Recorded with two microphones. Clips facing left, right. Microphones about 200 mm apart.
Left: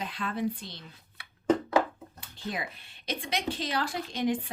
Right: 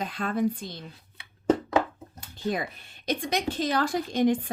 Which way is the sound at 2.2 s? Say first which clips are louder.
Right 7 dB; 45° right (ahead or behind).